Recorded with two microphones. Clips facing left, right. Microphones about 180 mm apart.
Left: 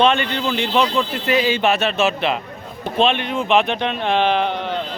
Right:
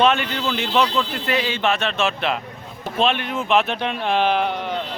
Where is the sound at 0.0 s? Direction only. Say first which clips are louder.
Left 2 dB; 5° right (ahead or behind).